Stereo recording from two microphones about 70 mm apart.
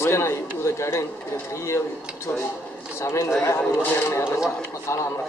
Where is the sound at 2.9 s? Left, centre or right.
Left.